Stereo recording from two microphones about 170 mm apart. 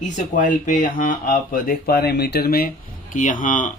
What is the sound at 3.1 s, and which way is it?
Speech, 50° left (ahead or behind).